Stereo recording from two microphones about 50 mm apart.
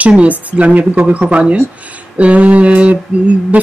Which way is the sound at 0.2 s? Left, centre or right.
Right.